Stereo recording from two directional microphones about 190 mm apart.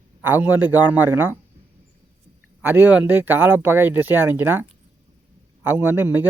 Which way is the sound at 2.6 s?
10° right (ahead or behind).